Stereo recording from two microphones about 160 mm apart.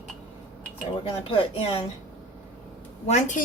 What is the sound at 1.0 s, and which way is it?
Speech, 35° left (ahead or behind).